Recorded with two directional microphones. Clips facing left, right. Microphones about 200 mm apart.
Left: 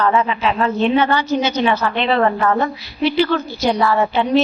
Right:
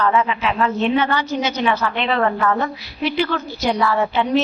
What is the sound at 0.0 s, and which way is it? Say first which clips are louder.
A woman's voice: left 2 dB; 35° left (ahead or behind).